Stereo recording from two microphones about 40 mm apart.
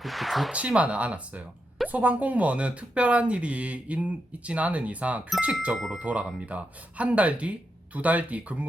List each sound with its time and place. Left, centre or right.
0.0 s a sound: centre
0.5 s speech: right
5.7 s speech: centre
6.0 s speech: right